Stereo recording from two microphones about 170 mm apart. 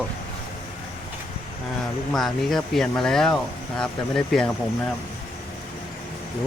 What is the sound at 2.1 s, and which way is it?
Speech, centre (ahead or behind).